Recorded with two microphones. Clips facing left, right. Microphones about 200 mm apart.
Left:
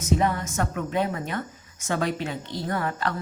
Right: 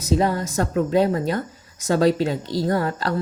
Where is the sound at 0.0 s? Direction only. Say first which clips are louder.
Right 3 dB; 35° right (ahead or behind).